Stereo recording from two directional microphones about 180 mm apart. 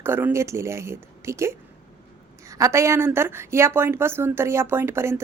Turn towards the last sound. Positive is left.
turn(degrees=-15)  # may be behind; listen again after turning